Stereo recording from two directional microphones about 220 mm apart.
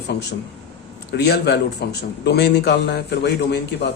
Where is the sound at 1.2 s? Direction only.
50° left (ahead or behind).